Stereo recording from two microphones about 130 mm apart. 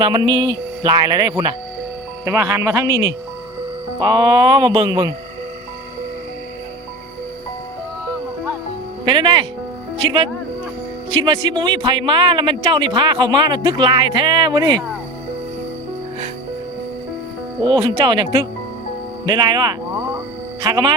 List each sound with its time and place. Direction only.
0.0 s speech: 30° right (ahead or behind)
9.0 s speech: 35° right (ahead or behind)
17.6 s speech: 35° right (ahead or behind)